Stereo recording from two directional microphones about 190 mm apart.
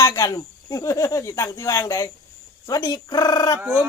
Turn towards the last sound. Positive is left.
turn(degrees=20)  # may be behind; listen again after turning